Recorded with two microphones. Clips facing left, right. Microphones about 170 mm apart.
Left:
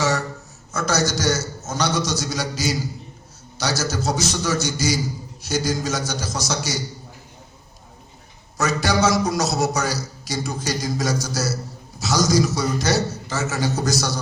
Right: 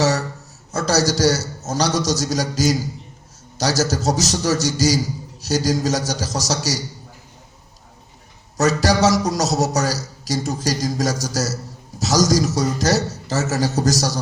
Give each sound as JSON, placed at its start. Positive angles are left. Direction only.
{"t": 0.0, "sound": "a sound", "side_deg": -40}
{"t": 0.7, "sound": "a man's voice", "side_deg": -35}
{"t": 8.5, "sound": "a man's voice", "side_deg": -40}